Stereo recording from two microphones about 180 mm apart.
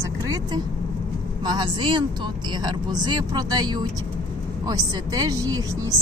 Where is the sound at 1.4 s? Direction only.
25° right (ahead or behind).